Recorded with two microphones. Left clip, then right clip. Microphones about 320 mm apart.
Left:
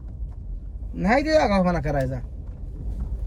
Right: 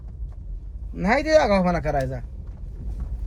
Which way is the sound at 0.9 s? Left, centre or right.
Centre.